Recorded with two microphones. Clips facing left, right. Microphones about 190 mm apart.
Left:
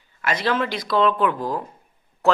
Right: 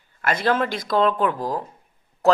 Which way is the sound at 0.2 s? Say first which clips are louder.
Right 1 dB; 50° right (ahead or behind).